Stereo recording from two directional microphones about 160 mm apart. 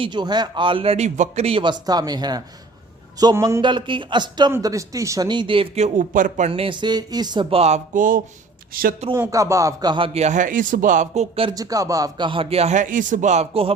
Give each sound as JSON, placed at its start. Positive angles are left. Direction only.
{"t": 0.0, "sound": "a man's voice", "side_deg": -30}
{"t": 6.5, "sound": "speech", "side_deg": -30}
{"t": 9.1, "sound": "a man's voice", "side_deg": -20}
{"t": 10.2, "sound": "speech", "side_deg": -50}
{"t": 11.5, "sound": "speech", "side_deg": -20}